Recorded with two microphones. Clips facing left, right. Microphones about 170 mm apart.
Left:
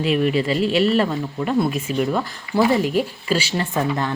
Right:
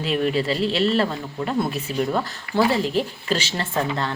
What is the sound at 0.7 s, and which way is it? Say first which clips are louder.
Speech: left 4 dB; 10° left (ahead or behind).